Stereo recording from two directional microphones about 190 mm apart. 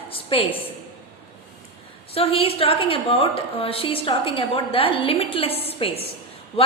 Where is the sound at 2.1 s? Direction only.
30° left (ahead or behind).